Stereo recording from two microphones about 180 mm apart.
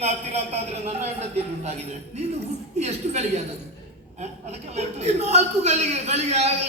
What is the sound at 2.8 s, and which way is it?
Speech, 35° right (ahead or behind).